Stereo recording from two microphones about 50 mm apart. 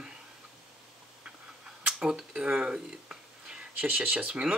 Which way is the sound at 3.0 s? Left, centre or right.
Right.